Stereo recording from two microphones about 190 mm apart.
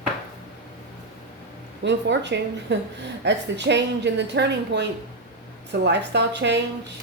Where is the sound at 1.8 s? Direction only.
70° right (ahead or behind).